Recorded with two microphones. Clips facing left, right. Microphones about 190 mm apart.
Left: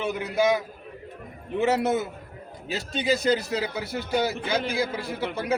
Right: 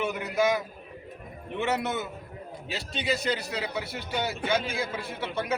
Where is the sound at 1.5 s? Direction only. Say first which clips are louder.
Left 6 dB; 35° left (ahead or behind).